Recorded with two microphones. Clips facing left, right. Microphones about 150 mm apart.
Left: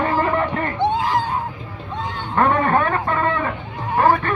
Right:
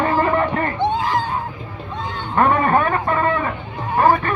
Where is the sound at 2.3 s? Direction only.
15° right (ahead or behind).